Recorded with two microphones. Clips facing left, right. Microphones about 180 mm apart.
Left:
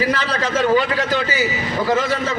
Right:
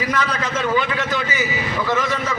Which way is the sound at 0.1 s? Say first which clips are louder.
Left 2 dB; 30° left (ahead or behind).